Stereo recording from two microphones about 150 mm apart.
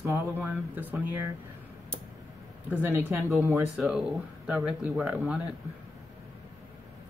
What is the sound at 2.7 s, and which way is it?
Speech, 15° right (ahead or behind).